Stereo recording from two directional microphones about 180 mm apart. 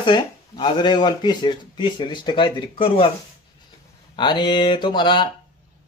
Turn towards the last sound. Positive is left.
turn(degrees=25)  # may be behind; listen again after turning